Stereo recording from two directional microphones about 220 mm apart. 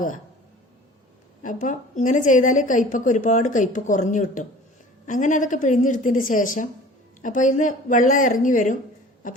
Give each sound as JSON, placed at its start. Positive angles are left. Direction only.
{"t": 1.4, "sound": "a woman's voice", "side_deg": 35}